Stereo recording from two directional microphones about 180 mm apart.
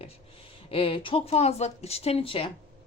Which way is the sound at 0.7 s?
30° left (ahead or behind).